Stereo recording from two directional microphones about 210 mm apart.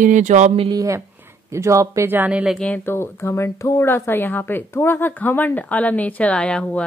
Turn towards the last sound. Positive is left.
turn(degrees=5)  # may be behind; listen again after turning